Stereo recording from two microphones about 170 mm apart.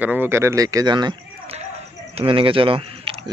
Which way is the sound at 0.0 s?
10° right (ahead or behind).